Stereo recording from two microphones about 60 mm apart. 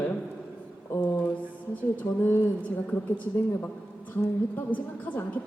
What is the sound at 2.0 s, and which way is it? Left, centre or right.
Speech, left.